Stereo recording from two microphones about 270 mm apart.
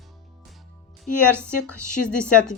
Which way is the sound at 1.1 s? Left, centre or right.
Left.